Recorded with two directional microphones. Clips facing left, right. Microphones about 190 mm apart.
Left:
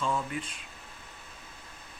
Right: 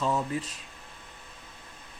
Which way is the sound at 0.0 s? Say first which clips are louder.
Right 3 dB; 35° right (ahead or behind).